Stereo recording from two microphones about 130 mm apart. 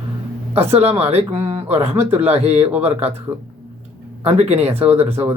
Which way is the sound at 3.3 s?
15° right (ahead or behind).